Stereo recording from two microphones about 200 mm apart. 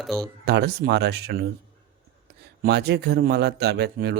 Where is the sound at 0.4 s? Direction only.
55° right (ahead or behind).